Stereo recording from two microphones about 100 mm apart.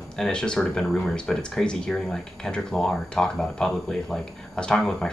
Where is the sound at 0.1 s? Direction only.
5° left (ahead or behind).